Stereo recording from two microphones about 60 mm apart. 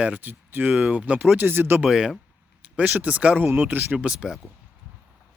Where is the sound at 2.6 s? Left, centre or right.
Right.